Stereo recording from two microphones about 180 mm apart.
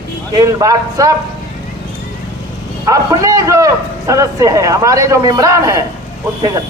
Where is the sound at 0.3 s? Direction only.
20° right (ahead or behind).